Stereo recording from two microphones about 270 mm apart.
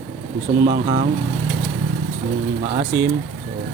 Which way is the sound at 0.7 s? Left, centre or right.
Centre.